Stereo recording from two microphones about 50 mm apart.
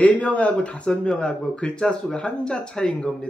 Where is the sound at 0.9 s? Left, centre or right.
Centre.